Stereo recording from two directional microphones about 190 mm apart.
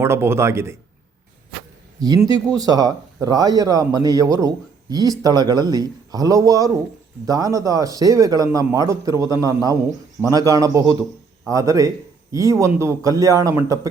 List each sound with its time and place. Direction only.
0.0 s a man's voice: 15° right (ahead or behind)
2.0 s a man's voice: 20° right (ahead or behind)